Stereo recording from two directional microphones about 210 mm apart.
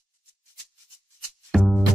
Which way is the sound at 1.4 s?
Centre (ahead or behind).